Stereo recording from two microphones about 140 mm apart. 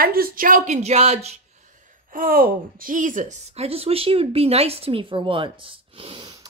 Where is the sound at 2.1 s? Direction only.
85° right; by 3.4 s 65° right (ahead or behind).